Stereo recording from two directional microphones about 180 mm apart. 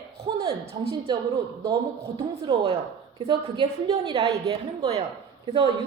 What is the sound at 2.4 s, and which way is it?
A woman's voice, 25° right (ahead or behind).